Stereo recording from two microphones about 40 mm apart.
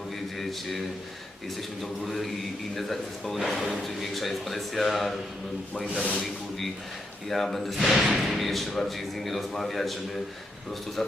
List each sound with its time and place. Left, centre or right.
1.5 s a man's voice: centre
5.9 s speech: left
6.1 s a man's voice: centre